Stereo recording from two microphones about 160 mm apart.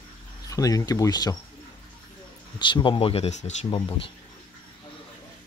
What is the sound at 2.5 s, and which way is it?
Speech, 30° left (ahead or behind).